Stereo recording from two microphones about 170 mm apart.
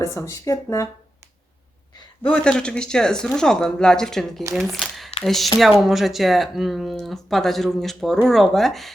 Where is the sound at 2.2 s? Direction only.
5° left (ahead or behind).